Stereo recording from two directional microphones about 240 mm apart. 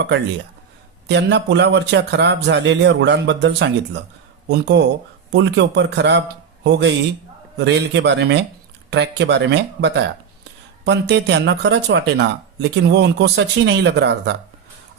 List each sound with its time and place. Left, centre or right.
1.0 s speech: right